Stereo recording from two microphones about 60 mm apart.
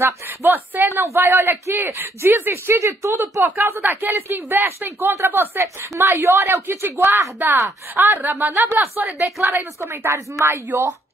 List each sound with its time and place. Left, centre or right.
0.0 s speech: right
1.0 s speech: right
3.8 s speech: right
8.5 s speech: right
9.8 s speech: right